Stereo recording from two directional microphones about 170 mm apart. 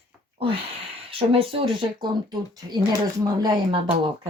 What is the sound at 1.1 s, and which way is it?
Speech, 35° right (ahead or behind).